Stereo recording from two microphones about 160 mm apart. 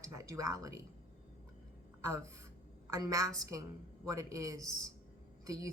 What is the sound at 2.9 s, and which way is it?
Speech, 20° right (ahead or behind).